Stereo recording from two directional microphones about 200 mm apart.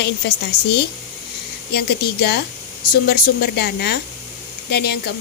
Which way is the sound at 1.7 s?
55° left (ahead or behind).